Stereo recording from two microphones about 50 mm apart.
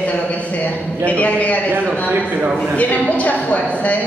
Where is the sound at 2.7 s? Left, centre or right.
Left.